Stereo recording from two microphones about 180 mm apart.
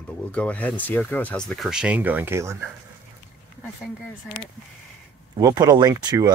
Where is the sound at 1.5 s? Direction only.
Centre (ahead or behind).